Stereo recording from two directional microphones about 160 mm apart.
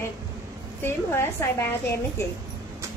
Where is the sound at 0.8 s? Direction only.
15° left (ahead or behind).